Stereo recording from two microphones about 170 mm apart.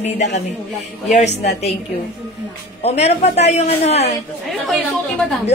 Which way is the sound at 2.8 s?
40° left (ahead or behind).